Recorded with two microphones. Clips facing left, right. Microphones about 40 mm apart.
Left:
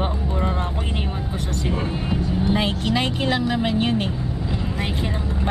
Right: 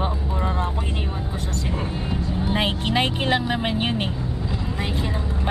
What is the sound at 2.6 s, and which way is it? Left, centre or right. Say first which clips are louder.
Speech: even; right.